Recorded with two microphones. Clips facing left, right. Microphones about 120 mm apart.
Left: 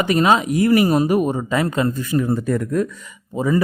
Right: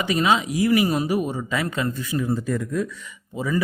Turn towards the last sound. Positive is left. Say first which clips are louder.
# left 6 dB
turn(degrees=40)  # may be behind; listen again after turning